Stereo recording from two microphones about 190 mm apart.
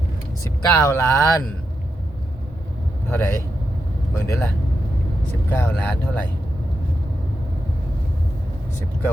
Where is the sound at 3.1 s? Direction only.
10° left (ahead or behind).